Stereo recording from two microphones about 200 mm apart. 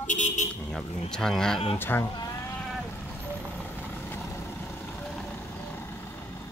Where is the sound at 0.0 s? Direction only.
40° left (ahead or behind).